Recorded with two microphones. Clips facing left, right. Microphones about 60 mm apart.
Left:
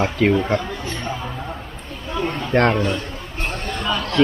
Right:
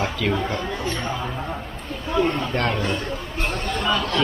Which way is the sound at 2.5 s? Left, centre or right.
Left.